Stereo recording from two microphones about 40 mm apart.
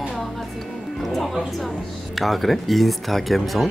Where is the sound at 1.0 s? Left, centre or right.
Centre.